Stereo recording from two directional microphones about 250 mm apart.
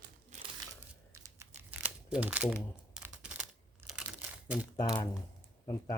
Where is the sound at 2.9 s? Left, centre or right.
Centre.